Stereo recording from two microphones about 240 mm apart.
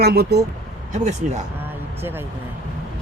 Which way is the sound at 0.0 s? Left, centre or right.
Right.